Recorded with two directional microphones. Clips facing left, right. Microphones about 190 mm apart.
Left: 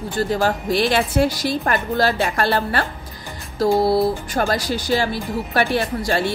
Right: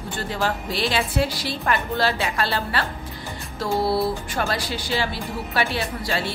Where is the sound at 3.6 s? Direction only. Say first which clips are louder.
Left 6 dB; 40° left (ahead or behind).